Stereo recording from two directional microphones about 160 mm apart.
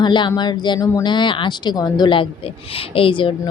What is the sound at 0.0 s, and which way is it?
A woman's voice, 30° left (ahead or behind).